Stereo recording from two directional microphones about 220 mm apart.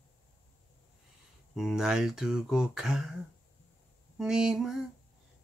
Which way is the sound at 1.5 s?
Centre (ahead or behind).